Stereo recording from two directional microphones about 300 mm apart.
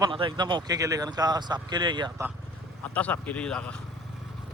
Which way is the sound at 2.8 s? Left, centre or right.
Centre.